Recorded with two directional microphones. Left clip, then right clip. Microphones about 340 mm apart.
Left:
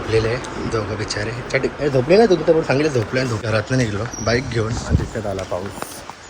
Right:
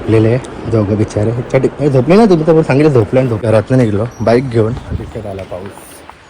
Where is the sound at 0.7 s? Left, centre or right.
Right.